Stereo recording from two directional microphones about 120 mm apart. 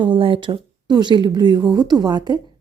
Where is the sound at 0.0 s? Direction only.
45° right (ahead or behind).